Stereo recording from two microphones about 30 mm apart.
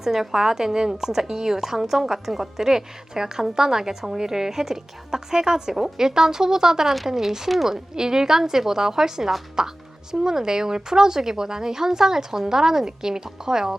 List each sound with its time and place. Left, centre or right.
0.0 s a woman's voice: centre
7.7 s a woman's voice: centre